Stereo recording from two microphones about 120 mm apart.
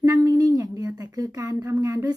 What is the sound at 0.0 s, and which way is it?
Speech, 30° right (ahead or behind).